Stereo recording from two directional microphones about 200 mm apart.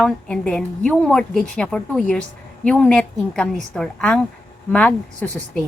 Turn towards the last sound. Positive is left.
turn(degrees=5)  # may be behind; listen again after turning